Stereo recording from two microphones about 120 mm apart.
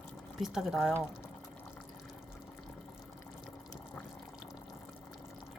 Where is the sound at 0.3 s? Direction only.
Centre (ahead or behind).